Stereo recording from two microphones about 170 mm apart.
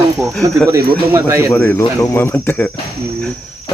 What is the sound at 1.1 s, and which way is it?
Speech, 15° right (ahead or behind).